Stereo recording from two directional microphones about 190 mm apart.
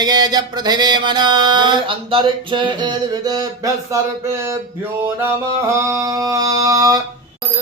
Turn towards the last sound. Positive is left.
turn(degrees=-20)  # may be behind; listen again after turning